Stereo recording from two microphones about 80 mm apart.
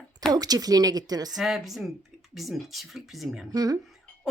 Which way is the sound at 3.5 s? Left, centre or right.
Right.